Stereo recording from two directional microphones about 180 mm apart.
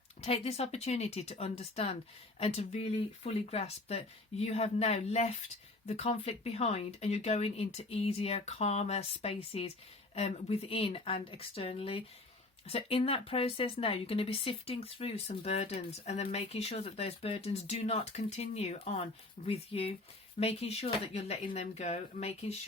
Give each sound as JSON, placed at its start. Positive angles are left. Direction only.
{"t": 0.2, "sound": "speech", "side_deg": 35}